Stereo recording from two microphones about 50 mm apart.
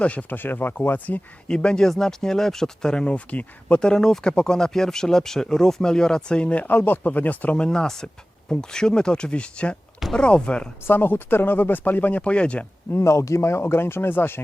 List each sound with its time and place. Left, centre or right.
0.0 s speech: left
0.3 s speech: left
1.5 s speech: centre
3.8 s speech: centre; by 7.5 s left
7.5 s speech: centre
10.8 s speech: left
12.2 s speech: left
13.1 s speech: left